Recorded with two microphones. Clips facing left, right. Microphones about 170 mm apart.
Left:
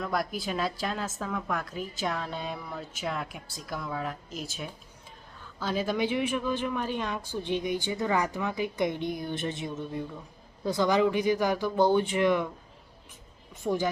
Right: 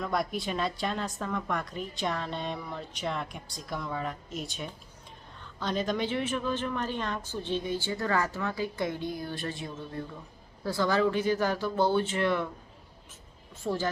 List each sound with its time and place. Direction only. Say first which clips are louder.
0.0 s a woman's voice: even; centre (ahead or behind)
13.6 s a woman's voice: left 2 dB; 15° left (ahead or behind)